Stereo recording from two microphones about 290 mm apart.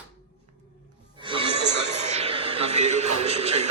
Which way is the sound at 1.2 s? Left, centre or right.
Centre.